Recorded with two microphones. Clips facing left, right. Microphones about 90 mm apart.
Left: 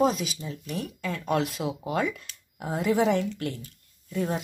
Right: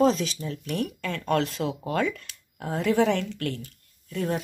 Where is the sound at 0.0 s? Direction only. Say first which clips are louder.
Right 2 dB; 5° left (ahead or behind).